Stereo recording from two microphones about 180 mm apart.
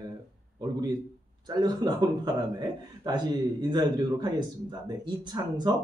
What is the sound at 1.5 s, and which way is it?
A man's voice, 25° right (ahead or behind).